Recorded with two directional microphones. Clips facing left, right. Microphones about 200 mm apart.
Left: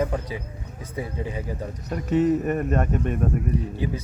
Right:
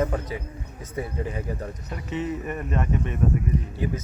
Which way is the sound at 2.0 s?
40° left (ahead or behind).